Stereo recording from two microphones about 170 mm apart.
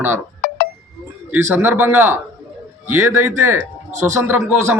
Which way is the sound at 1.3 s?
10° right (ahead or behind).